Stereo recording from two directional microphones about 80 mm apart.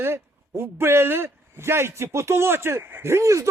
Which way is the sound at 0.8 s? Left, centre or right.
Right.